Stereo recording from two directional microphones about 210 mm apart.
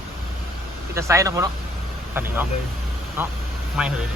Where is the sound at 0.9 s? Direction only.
15° right (ahead or behind).